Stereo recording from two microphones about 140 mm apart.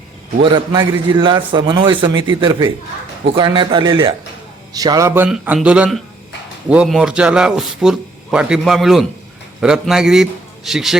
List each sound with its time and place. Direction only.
0.8 s a man's voice: 35° right (ahead or behind)
5.3 s a man's voice: 5° right (ahead or behind)